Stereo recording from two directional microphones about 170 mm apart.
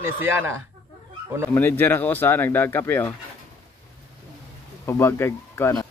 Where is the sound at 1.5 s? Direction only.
10° left (ahead or behind).